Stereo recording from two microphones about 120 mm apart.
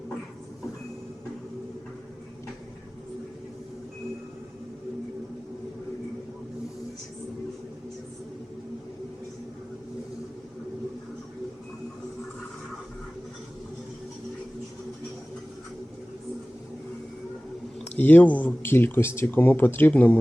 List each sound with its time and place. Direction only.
17.9 s speech: 15° left (ahead or behind)